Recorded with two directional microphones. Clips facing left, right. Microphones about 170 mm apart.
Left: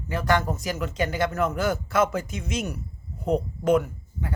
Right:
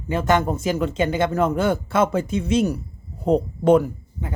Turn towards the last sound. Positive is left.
turn(degrees=-30)  # may be behind; listen again after turning